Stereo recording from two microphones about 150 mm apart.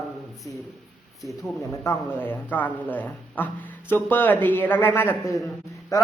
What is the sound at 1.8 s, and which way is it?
Speech, 10° left (ahead or behind).